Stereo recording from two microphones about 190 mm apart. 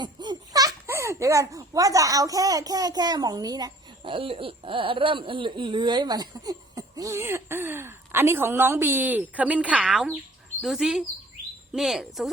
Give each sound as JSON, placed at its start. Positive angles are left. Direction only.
{"t": 0.0, "sound": "a child's voice", "side_deg": -25}